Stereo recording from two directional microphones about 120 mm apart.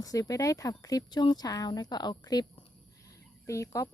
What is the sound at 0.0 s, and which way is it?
A woman's voice, 30° left (ahead or behind).